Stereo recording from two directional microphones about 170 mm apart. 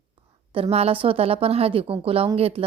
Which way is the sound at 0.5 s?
35° right (ahead or behind).